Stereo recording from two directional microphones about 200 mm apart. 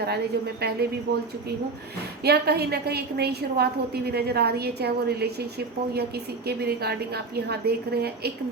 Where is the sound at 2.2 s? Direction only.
55° right (ahead or behind).